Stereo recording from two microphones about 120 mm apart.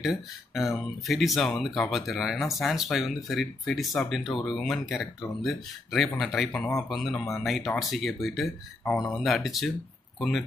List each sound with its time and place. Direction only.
0.0 s speech: centre (ahead or behind)